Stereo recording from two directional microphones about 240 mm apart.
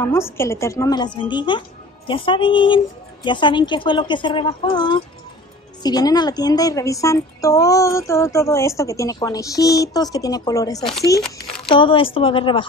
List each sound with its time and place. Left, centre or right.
0.0 s a woman's voice: centre
10.8 s speech: centre
11.7 s a woman's voice: left